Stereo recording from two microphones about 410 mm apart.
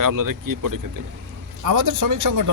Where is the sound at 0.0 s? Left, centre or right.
Right.